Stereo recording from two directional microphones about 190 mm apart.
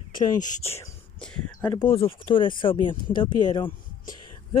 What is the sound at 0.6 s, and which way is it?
Whispering, 10° left (ahead or behind).